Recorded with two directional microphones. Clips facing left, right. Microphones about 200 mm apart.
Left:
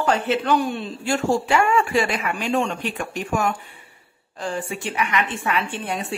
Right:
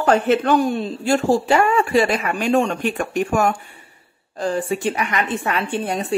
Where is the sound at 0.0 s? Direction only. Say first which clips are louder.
Right 5 dB; 50° right (ahead or behind).